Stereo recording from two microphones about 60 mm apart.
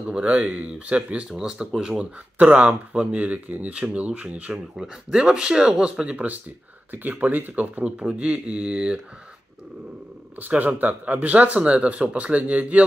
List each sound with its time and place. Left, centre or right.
0.0 s speech: centre
1.3 s speech: centre
4.7 s speech: centre
6.1 s speech: right
10.4 s speech: right